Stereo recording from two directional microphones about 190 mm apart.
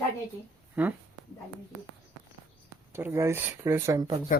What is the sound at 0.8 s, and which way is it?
Speech, 10° right (ahead or behind).